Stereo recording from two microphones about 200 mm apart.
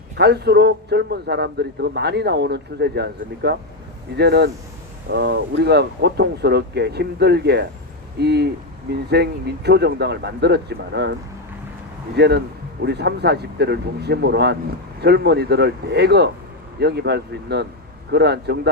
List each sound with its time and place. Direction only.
0.2 s a man's voice: 55° right (ahead or behind)
12.1 s a man's voice: 55° right (ahead or behind)